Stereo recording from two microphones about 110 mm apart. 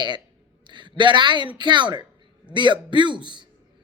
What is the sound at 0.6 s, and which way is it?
A man's voice, 45° right (ahead or behind).